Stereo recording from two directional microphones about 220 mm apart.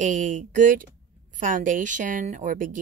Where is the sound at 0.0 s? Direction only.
35° right (ahead or behind).